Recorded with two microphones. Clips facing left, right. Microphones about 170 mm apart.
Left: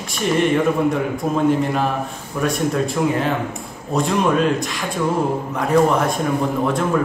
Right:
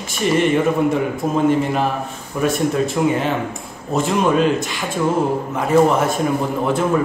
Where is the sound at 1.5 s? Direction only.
Centre (ahead or behind).